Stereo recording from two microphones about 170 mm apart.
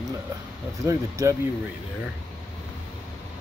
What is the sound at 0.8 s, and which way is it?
Speech, 20° right (ahead or behind).